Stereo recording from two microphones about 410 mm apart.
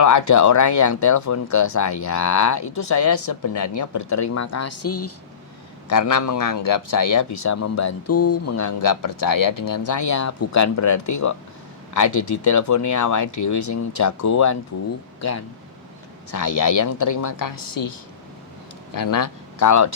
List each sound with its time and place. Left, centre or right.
0.0 s speech: left
5.9 s speech: left